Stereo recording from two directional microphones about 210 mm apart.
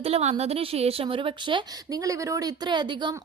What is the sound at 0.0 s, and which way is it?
A woman's voice, 30° right (ahead or behind).